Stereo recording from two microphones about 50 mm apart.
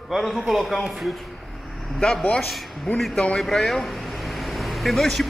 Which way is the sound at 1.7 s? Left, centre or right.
Centre.